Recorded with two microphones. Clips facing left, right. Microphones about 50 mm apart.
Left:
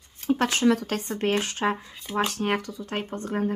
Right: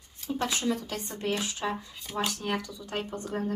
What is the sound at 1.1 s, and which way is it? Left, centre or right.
Speech, left.